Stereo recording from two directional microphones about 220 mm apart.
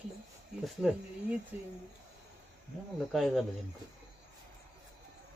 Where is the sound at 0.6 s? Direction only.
Centre (ahead or behind).